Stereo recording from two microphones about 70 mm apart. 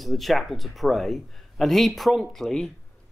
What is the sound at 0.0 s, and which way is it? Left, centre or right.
A man's voice, centre.